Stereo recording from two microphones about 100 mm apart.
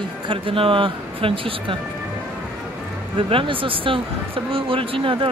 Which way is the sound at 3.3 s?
60° right (ahead or behind).